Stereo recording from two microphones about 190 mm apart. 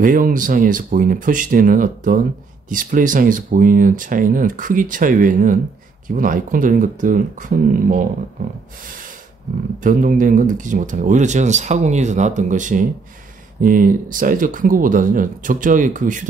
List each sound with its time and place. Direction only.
0.0 s speech: 45° right (ahead or behind)
9.8 s speech: 45° right (ahead or behind)